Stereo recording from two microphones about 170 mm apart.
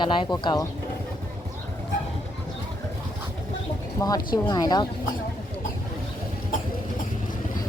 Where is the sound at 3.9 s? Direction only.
20° left (ahead or behind).